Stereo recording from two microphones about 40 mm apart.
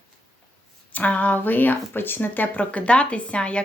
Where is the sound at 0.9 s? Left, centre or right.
Left.